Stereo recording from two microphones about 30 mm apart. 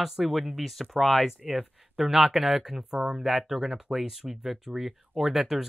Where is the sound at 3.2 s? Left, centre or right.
Centre.